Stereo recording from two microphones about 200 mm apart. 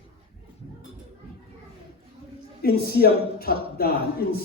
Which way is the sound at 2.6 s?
50° left (ahead or behind).